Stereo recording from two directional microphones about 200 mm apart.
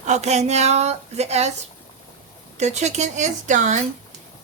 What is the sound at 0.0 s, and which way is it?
Speech, 35° right (ahead or behind).